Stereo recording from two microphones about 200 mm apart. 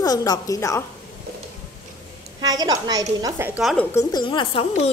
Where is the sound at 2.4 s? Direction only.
20° right (ahead or behind).